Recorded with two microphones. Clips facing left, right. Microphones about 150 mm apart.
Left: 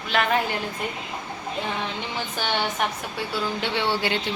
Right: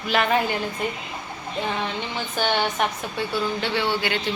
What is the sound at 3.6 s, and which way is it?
Speech, 20° left (ahead or behind).